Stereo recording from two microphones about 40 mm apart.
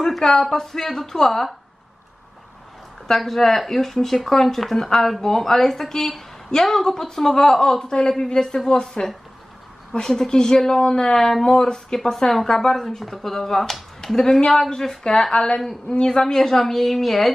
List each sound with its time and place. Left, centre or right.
0.0 s a woman's voice: centre
3.1 s a woman's voice: centre